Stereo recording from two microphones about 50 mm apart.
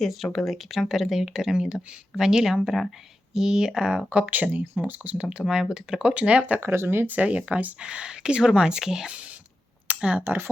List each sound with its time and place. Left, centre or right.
0.0 s speech: centre
3.3 s speech: centre
4.3 s speech: right
5.1 s speech: right
6.6 s speech: right; by 9.1 s centre
9.8 s a sound: right
10.2 s speech: right